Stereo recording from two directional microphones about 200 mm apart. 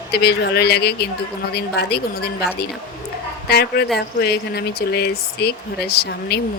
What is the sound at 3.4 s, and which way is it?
Speech, 55° left (ahead or behind).